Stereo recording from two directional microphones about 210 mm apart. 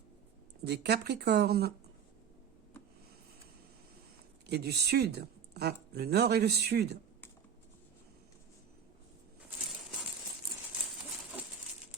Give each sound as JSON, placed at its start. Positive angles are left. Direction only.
{"t": 0.6, "sound": "speech", "side_deg": -50}
{"t": 4.4, "sound": "speech", "side_deg": -50}